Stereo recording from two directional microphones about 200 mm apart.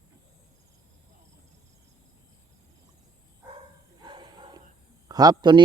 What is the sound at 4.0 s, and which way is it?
Dog, 20° right (ahead or behind).